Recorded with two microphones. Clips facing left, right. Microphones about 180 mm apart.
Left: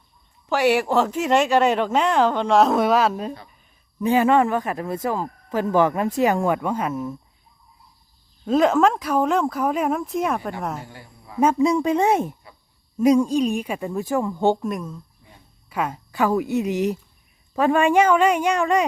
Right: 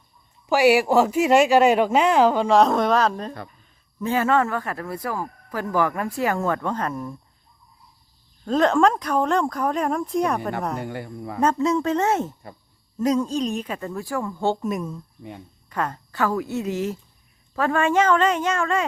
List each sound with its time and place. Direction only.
0.4 s speech: 10° right (ahead or behind)
8.4 s speech: 5° left (ahead or behind)
10.8 s speech: 65° right (ahead or behind)
11.3 s speech: 10° left (ahead or behind)
14.6 s speech: 5° right (ahead or behind)
15.7 s speech: 10° left (ahead or behind)